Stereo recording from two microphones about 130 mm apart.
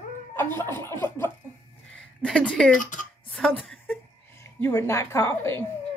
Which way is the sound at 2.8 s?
80° left.